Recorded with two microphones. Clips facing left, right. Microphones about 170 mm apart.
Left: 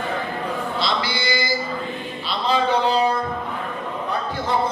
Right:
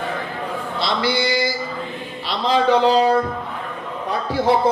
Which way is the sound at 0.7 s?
60° right (ahead or behind).